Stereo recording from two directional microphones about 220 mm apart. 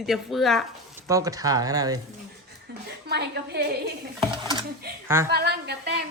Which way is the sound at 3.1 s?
50° right (ahead or behind).